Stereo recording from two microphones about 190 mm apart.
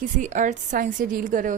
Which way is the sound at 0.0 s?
40° right (ahead or behind).